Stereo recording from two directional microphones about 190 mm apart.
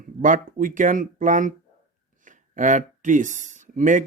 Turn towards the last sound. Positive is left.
turn(degrees=-45)  # may be behind; listen again after turning